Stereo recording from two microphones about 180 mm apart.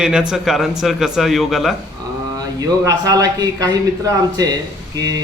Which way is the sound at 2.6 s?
20° right (ahead or behind).